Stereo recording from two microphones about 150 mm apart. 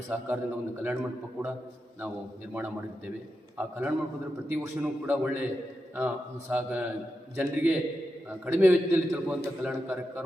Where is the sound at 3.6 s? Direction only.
10° right (ahead or behind).